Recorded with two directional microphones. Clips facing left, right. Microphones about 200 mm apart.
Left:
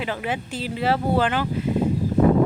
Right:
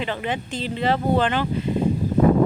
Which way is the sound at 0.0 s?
5° left (ahead or behind).